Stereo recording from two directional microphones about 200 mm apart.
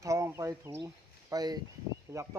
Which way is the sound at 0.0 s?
15° right (ahead or behind).